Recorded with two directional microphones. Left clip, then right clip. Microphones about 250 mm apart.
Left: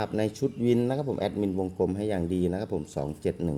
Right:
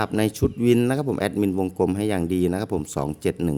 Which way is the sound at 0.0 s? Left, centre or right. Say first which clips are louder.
Right 5 dB; right.